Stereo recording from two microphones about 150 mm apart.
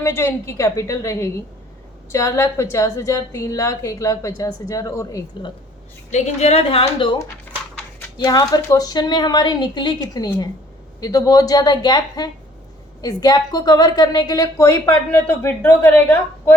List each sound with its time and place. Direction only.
0.0 s a woman's voice: 15° left (ahead or behind)
6.1 s a woman's voice: 50° left (ahead or behind); by 7.2 s 35° left (ahead or behind)
8.2 s a woman's voice: 25° left (ahead or behind)